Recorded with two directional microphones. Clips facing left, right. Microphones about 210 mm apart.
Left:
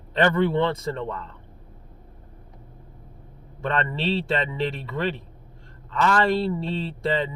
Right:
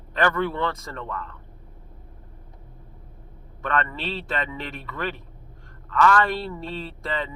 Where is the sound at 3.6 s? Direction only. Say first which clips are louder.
Left 2 dB; 30° left (ahead or behind).